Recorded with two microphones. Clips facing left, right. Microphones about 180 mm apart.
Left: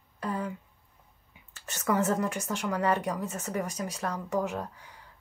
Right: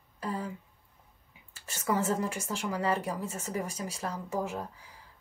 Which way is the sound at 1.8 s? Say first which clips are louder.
Left 2 dB; 30° right (ahead or behind).